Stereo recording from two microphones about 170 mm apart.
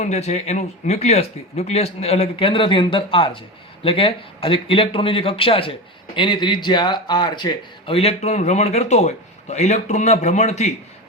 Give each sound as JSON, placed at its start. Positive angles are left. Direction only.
{"t": 0.0, "sound": "speech", "side_deg": 40}